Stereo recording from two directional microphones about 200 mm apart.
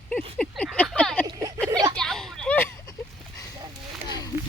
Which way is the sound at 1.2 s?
20° right (ahead or behind).